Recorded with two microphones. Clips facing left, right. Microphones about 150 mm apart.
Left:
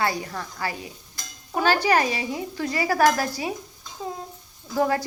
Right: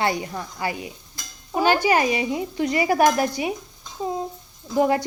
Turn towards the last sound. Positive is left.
turn(degrees=-20)  # may be behind; listen again after turning